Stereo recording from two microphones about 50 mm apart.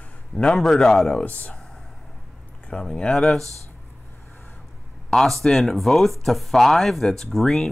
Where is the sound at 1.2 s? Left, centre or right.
Left.